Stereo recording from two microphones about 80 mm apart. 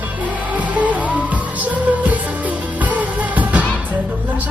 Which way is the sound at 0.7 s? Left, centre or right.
Centre.